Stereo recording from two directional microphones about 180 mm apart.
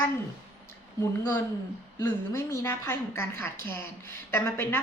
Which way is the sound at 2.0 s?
15° left (ahead or behind).